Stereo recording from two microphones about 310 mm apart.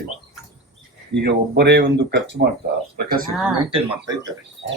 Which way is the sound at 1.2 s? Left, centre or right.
Right.